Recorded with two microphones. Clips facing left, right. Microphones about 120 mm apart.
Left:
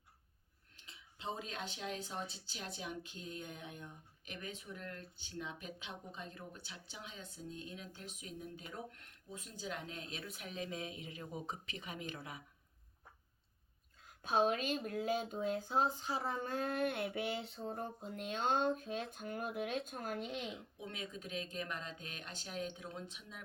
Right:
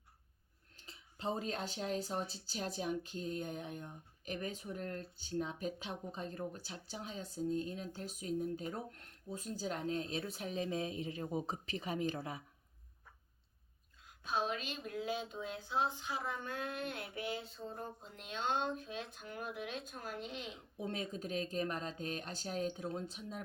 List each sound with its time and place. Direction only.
0.8 s speech: 40° right (ahead or behind)
14.2 s speech: 50° left (ahead or behind)
20.7 s speech: 35° right (ahead or behind)